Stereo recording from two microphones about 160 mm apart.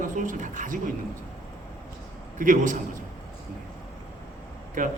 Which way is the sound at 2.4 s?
55° right (ahead or behind).